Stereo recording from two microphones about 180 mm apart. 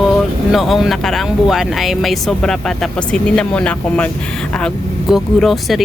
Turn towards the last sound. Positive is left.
turn(degrees=0)  # may be behind; listen again after turning